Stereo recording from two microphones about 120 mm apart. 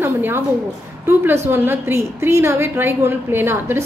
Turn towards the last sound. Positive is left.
turn(degrees=-20)  # may be behind; listen again after turning